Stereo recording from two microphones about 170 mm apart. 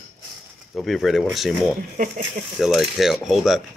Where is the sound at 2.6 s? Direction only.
Centre (ahead or behind).